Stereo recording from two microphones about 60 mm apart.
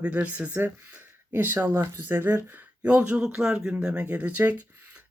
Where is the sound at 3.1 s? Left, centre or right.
Centre.